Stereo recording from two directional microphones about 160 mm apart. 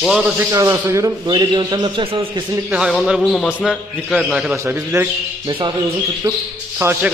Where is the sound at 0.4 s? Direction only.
20° right (ahead or behind).